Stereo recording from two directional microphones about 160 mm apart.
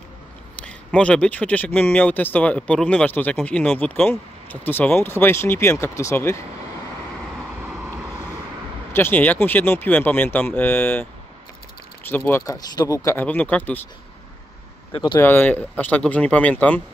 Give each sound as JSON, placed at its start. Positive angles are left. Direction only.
{"t": 0.6, "sound": "speech", "side_deg": 5}
{"t": 8.9, "sound": "speech", "side_deg": 10}
{"t": 12.5, "sound": "speech", "side_deg": 25}
{"t": 14.9, "sound": "speech", "side_deg": 30}
{"t": 15.1, "sound": "speech", "side_deg": 15}